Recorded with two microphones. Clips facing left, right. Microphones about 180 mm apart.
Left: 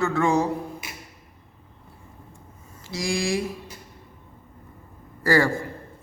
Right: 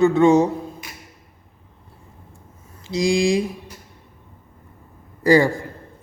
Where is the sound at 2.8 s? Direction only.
20° right (ahead or behind).